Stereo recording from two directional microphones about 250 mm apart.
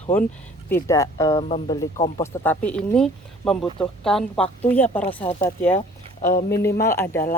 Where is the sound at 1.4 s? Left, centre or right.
Left.